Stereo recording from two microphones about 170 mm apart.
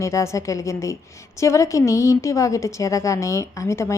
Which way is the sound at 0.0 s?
15° left (ahead or behind).